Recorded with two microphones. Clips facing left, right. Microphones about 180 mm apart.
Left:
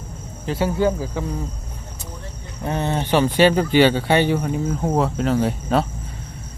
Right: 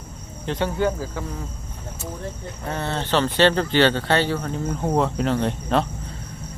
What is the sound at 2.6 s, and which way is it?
Speech, 15° left (ahead or behind).